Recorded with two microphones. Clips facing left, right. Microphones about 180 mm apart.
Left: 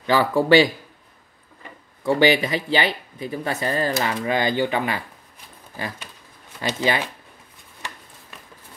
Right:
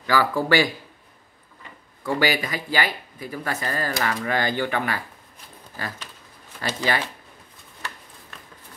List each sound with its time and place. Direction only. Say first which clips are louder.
0.0 s speech: left 3 dB; 20° left (ahead or behind)
2.0 s speech: left 5 dB; 20° left (ahead or behind)
6.6 s speech: left 2 dB; 20° left (ahead or behind)